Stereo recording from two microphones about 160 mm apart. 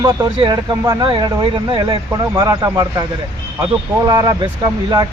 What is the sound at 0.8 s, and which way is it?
Speech, 20° right (ahead or behind).